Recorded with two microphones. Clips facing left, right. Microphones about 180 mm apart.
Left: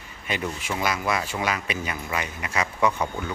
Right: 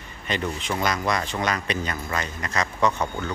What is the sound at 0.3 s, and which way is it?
Speech, 10° left (ahead or behind).